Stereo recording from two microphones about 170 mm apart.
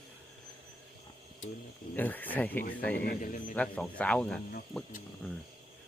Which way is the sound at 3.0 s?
55° left (ahead or behind).